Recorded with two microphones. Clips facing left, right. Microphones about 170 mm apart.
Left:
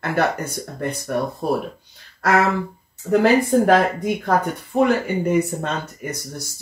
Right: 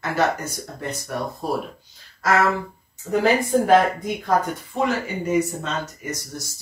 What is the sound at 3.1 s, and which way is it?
Speech, 60° left (ahead or behind).